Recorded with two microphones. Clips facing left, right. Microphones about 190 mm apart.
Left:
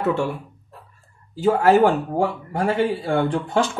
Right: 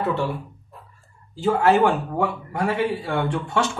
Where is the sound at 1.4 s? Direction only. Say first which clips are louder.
Left 2 dB; 40° left (ahead or behind).